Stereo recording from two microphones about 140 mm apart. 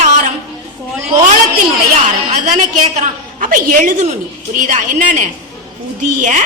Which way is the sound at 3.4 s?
85° right.